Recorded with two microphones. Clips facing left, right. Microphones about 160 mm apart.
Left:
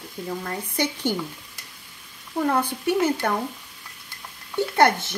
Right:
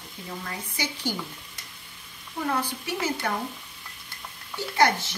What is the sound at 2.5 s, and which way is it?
Speech, 55° left (ahead or behind).